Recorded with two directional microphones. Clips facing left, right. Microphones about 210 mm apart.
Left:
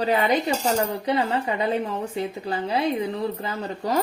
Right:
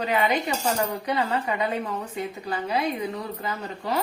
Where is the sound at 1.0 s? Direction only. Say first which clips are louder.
Left 2 dB; 25° left (ahead or behind).